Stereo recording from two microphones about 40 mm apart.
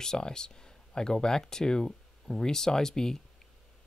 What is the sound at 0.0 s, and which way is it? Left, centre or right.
Speech, centre.